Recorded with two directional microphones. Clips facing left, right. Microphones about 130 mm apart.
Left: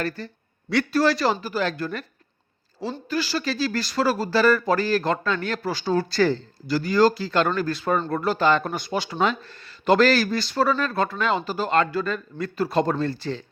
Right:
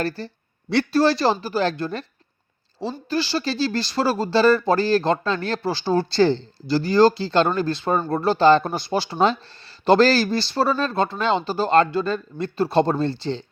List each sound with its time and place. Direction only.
0.2 s speech: 30° right (ahead or behind)
3.1 s speech: 30° right (ahead or behind)